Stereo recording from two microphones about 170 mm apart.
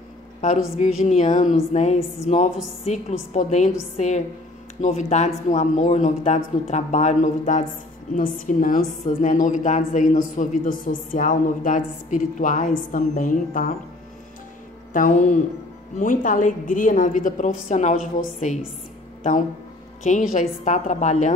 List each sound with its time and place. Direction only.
0.4 s a woman's voice: 45° left (ahead or behind)
14.9 s a woman's voice: 50° left (ahead or behind)
20.0 s a woman's voice: 45° left (ahead or behind)